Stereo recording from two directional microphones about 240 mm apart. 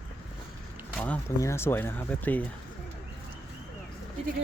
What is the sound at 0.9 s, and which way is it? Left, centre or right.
Speech, centre.